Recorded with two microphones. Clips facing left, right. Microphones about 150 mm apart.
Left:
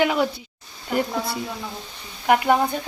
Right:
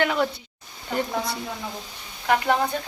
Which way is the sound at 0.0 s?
5° left (ahead or behind).